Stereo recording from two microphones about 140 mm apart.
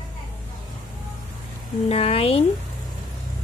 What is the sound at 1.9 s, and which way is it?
Speech, 45° left (ahead or behind).